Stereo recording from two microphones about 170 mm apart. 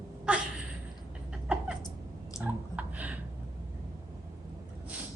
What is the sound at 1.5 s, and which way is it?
Cat, 5° right (ahead or behind).